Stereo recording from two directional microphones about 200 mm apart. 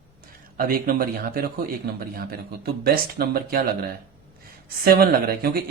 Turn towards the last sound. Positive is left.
turn(degrees=-50)  # may be behind; listen again after turning